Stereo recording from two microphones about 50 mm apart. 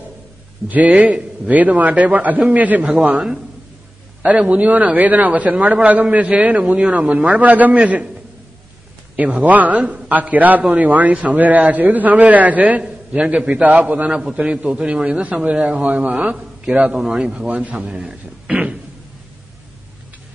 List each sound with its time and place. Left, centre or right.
0.7 s a man's voice: right
4.2 s a man's voice: right
9.1 s speech: right
9.5 s a man's voice: right
14.1 s a man's voice: centre
16.9 s a man's voice: centre
17.5 s a man's voice: right
18.5 s a sound: centre